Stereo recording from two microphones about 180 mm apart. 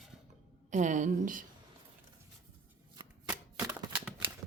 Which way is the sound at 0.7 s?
45° right (ahead or behind).